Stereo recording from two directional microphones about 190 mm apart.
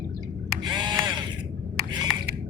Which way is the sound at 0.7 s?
25° right (ahead or behind).